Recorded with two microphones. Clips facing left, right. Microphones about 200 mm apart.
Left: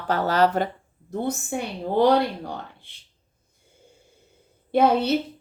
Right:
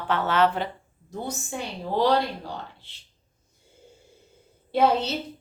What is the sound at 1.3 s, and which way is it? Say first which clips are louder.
Speech: left 4 dB; 55° left (ahead or behind).